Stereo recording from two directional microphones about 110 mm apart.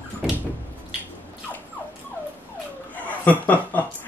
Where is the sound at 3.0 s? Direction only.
15° left (ahead or behind).